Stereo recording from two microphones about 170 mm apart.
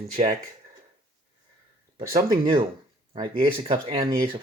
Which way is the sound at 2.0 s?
20° right (ahead or behind).